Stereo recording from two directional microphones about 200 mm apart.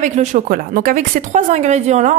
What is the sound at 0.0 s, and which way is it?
Speech, 35° right (ahead or behind).